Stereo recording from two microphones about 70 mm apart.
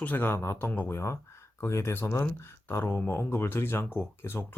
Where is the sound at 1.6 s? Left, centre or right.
Left.